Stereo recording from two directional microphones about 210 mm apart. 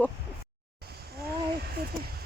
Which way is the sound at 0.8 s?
50° right (ahead or behind).